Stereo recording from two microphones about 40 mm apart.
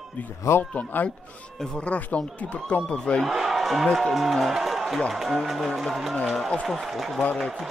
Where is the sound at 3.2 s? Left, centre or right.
Centre.